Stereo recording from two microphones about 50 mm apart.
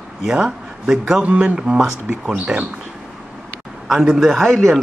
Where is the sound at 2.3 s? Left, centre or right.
Right.